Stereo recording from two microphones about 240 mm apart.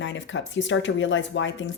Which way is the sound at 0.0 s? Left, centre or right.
Left.